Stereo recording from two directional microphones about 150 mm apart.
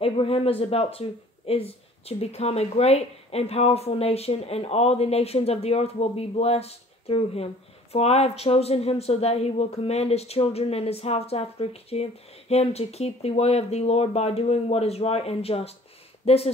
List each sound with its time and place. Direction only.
0.0 s speech: 40° left (ahead or behind)